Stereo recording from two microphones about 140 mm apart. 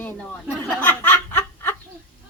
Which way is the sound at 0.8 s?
15° left (ahead or behind).